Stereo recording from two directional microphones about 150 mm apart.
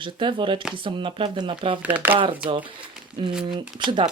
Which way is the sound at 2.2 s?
35° right (ahead or behind).